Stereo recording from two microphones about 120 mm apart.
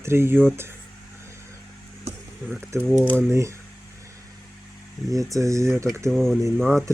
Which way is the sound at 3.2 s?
25° right (ahead or behind).